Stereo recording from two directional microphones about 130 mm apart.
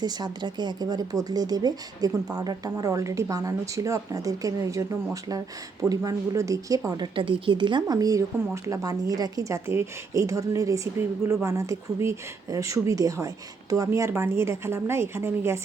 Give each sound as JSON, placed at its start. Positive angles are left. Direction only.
{"t": 0.0, "sound": "speech", "side_deg": -35}
{"t": 5.9, "sound": "speech", "side_deg": -25}